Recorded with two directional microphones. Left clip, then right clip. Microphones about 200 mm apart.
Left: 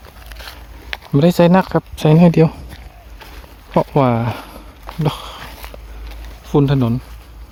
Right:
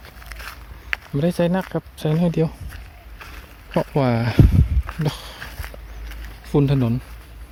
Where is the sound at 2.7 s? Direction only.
Centre (ahead or behind).